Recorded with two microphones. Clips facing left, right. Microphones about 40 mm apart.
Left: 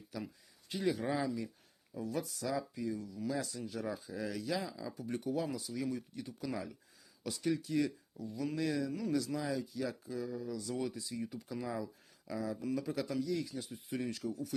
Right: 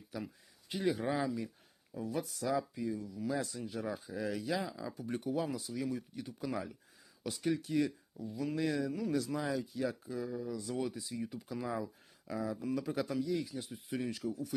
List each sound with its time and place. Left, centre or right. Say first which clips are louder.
0.1 s speech: right 1 dB; centre
9.2 s speech: right 1 dB; right; by 14.5 s centre